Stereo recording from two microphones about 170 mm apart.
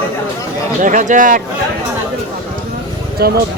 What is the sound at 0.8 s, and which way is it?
Speech, 50° right (ahead or behind).